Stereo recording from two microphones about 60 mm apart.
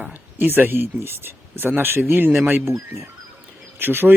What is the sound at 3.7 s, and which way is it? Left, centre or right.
Speech, right.